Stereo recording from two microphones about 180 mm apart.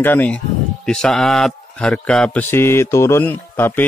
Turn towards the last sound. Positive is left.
turn(degrees=10)  # may be behind; listen again after turning